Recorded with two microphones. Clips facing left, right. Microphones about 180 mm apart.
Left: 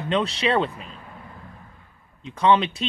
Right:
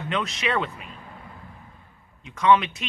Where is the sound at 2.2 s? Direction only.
30° left (ahead or behind).